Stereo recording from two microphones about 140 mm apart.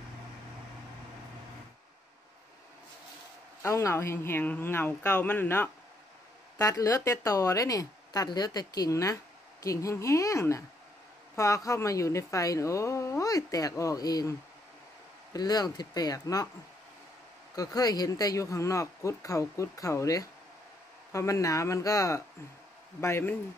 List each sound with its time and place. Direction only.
3.6 s speech: 20° left (ahead or behind)
6.6 s speech: 25° left (ahead or behind)
15.3 s speech: 30° left (ahead or behind)
17.6 s speech: 25° left (ahead or behind)